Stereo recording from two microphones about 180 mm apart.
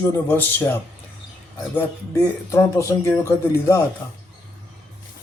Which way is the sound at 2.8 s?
15° left (ahead or behind).